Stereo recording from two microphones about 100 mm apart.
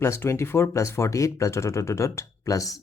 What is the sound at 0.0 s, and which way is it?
Speech, 25° left (ahead or behind).